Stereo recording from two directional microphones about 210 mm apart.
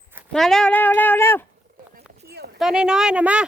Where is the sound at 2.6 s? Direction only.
5° right (ahead or behind).